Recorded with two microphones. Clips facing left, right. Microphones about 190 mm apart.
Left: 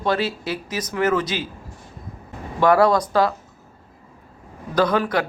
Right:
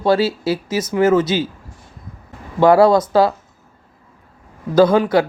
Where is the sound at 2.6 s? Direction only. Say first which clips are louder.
Right 5 dB; 25° right (ahead or behind).